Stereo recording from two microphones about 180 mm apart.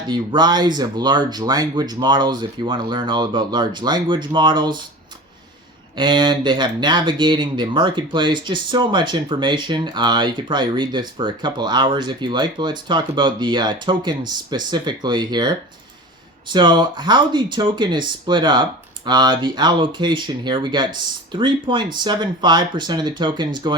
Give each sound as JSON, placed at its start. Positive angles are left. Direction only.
{"t": 0.1, "sound": "speech", "side_deg": -25}
{"t": 6.0, "sound": "speech", "side_deg": -25}